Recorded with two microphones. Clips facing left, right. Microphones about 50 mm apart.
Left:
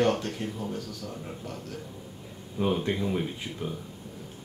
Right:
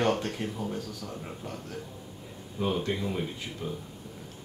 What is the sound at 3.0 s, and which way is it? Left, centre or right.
Speech, centre.